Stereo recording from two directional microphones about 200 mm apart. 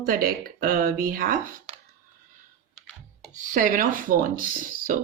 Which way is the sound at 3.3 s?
40° right (ahead or behind).